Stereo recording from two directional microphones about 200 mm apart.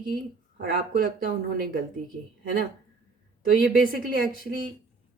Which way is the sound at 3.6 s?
45° right (ahead or behind).